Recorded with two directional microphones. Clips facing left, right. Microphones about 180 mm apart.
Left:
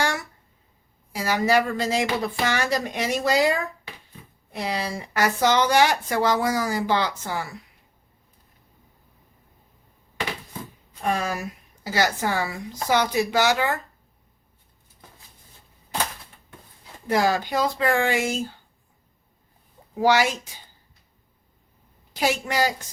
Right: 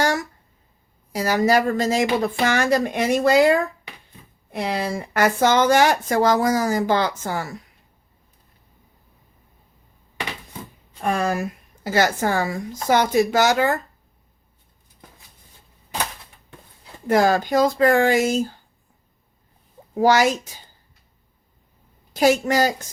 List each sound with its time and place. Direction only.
0.0 s a sound: 40° right (ahead or behind)
1.1 s speech: 40° right (ahead or behind)
11.1 s speech: 50° right (ahead or behind)
17.1 s speech: 50° right (ahead or behind)
20.0 s speech: 45° right (ahead or behind)
22.1 s a woman's voice: 45° right (ahead or behind)